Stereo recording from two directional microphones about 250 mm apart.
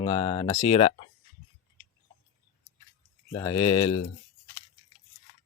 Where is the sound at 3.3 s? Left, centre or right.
Centre.